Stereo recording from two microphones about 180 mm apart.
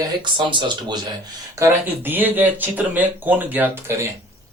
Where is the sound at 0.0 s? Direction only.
25° right (ahead or behind).